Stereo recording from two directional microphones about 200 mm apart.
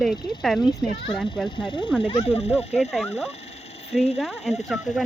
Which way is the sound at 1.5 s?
25° left (ahead or behind).